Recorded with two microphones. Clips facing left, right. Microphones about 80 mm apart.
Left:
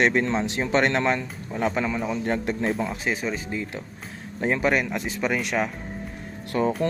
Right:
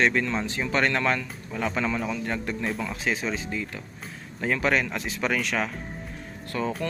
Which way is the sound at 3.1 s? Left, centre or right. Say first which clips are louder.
Left 1 dB; centre.